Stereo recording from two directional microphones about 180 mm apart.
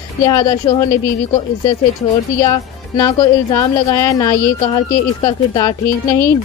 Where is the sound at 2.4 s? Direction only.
20° left (ahead or behind).